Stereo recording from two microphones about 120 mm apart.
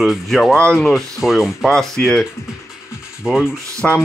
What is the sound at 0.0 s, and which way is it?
Speech, centre (ahead or behind).